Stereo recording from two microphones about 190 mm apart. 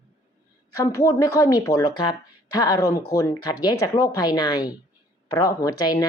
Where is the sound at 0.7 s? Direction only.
15° left (ahead or behind).